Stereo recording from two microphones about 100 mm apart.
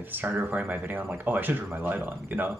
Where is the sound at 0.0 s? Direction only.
20° right (ahead or behind).